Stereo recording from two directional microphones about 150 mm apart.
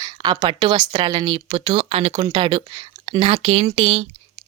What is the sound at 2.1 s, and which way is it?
Speech, 30° right (ahead or behind).